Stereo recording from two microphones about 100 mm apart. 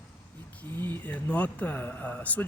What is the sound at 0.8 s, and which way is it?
Speech, 15° left (ahead or behind).